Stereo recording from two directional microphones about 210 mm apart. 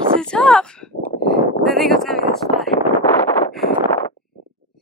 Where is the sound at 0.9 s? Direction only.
55° left (ahead or behind).